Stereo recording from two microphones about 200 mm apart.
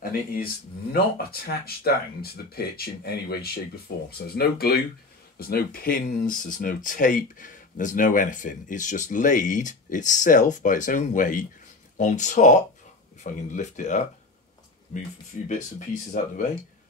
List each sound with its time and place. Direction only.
0.9 s speech: 50° left (ahead or behind)
15.4 s speech: 40° left (ahead or behind)